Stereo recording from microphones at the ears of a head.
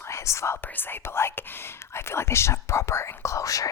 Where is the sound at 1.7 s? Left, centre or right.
Left.